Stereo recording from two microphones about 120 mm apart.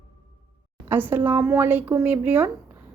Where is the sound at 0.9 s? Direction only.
20° right (ahead or behind).